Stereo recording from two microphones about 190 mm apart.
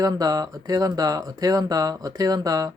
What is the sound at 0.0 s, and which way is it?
Speech, 20° right (ahead or behind).